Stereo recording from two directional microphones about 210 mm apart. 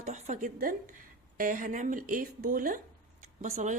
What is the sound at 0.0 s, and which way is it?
A woman's voice, 35° right (ahead or behind).